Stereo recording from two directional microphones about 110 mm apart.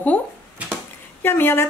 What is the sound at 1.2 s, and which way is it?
Speech, 20° left (ahead or behind).